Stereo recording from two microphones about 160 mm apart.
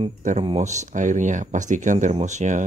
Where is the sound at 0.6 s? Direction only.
50° right (ahead or behind).